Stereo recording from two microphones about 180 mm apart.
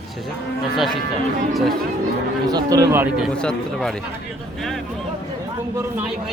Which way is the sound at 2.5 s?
20° right (ahead or behind).